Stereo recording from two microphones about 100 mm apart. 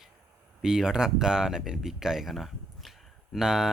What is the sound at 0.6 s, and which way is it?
Speech, 5° right (ahead or behind).